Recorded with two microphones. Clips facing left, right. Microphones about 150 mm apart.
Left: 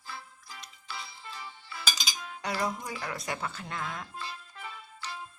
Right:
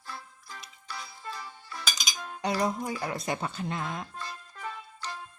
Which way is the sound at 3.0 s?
20° right (ahead or behind).